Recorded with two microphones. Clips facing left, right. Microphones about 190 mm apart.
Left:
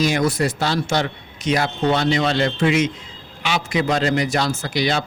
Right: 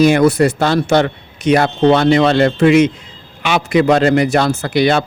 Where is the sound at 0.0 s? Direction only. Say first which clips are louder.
Right 9 dB; 60° right (ahead or behind).